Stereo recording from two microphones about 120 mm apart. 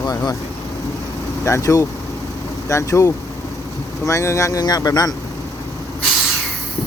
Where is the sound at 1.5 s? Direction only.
25° left (ahead or behind).